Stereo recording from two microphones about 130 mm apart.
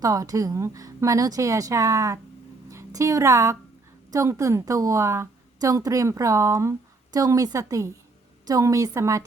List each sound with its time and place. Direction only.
0.0 s a woman's voice: 25° right (ahead or behind)